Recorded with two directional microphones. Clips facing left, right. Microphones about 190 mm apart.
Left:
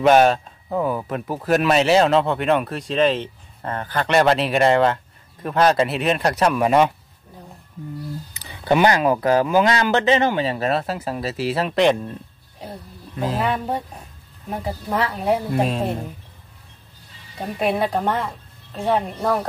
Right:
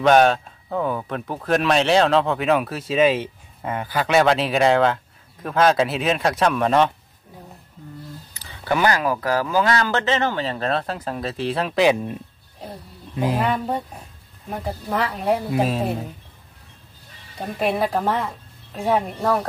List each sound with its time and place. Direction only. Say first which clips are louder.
0.0 s speech: left 1 dB; 5° left (ahead or behind)
8.3 s speech: left 4 dB; 15° left (ahead or behind); by 13.4 s 15° right (ahead or behind)
13.4 s speech: even; centre (ahead or behind)
17.4 s speech: left 1 dB; centre (ahead or behind)